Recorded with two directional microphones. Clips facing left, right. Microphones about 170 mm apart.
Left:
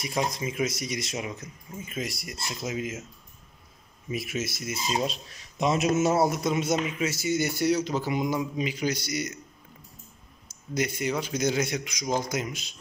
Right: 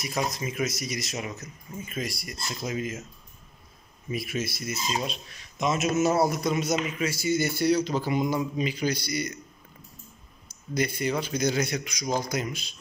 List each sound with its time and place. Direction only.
0.5 s a man's voice: 25° left (ahead or behind)
2.5 s a man's voice: 10° left (ahead or behind)
4.1 s a man's voice: 20° left (ahead or behind)
10.7 s a man's voice: 20° left (ahead or behind)